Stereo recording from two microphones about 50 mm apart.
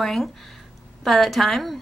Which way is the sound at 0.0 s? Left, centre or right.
Centre.